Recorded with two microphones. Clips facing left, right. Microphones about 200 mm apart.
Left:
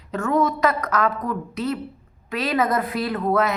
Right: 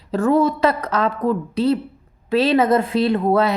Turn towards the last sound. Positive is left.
turn(degrees=-30)  # may be behind; listen again after turning